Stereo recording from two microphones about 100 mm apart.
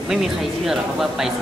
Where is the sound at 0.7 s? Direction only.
5° right (ahead or behind).